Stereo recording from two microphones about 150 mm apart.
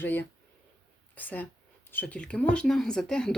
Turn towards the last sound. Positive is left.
turn(degrees=5)  # may be behind; listen again after turning